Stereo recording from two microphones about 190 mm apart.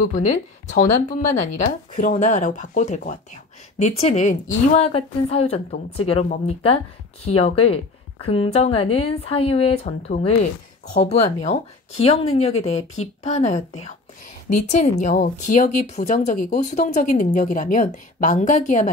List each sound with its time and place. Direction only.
0.7 s speech: 40° left (ahead or behind)